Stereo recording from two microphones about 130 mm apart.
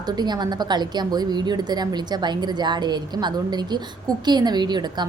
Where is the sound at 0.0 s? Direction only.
35° right (ahead or behind).